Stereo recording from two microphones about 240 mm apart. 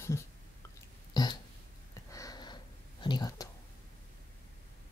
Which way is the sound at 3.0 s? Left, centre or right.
Centre.